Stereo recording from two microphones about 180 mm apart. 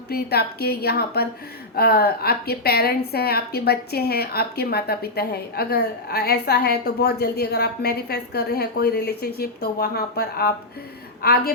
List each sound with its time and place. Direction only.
0.1 s a woman's voice: 60° left (ahead or behind)